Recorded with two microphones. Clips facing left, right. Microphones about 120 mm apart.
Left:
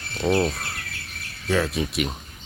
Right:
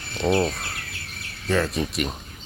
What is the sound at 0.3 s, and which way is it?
Speech, centre (ahead or behind).